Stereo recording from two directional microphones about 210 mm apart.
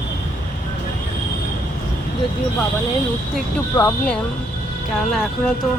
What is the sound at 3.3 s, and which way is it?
Speech, 5° left (ahead or behind).